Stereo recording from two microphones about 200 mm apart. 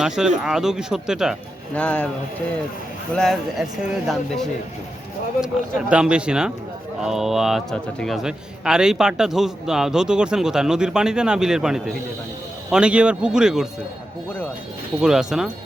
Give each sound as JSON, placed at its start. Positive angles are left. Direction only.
{"t": 0.0, "sound": "a man's voice", "side_deg": -5}
{"t": 3.1, "sound": "a man's voice", "side_deg": 0}
{"t": 5.9, "sound": "a man's voice", "side_deg": -5}
{"t": 15.0, "sound": "a man's voice", "side_deg": 0}